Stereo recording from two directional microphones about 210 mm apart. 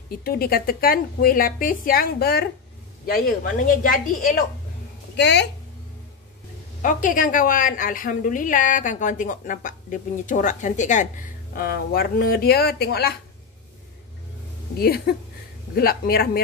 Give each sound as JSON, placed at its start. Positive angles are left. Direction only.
{"t": 0.2, "sound": "a woman's voice", "side_deg": 45}
{"t": 5.1, "sound": "a woman's voice", "side_deg": 55}
{"t": 6.8, "sound": "a woman's voice", "side_deg": 40}
{"t": 14.8, "sound": "a woman's voice", "side_deg": 50}